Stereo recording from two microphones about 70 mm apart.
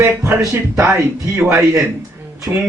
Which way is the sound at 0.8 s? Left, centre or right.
Right.